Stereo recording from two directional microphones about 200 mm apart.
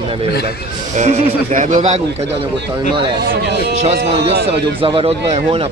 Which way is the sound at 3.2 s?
55° right (ahead or behind).